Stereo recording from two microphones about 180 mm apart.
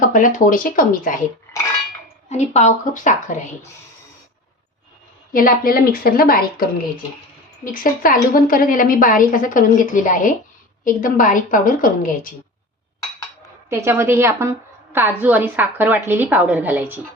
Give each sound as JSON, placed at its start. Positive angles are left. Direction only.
{"t": 0.0, "sound": "a woman's voice", "side_deg": 45}
{"t": 2.3, "sound": "a woman's voice", "side_deg": 40}
{"t": 5.3, "sound": "a woman's voice", "side_deg": 50}
{"t": 13.7, "sound": "a woman's voice", "side_deg": -15}